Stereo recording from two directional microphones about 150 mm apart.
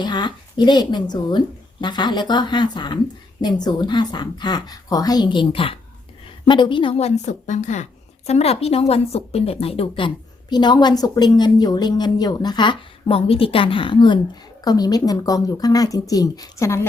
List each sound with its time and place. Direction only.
0.0 s a woman's voice: 30° left (ahead or behind)